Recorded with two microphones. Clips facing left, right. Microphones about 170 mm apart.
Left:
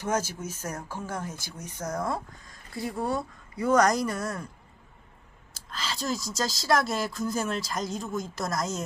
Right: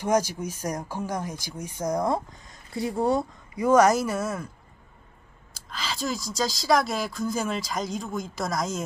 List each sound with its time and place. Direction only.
0.0 s speech: 15° right (ahead or behind)
3.6 s speech: 10° right (ahead or behind)
5.5 s speech: centre (ahead or behind)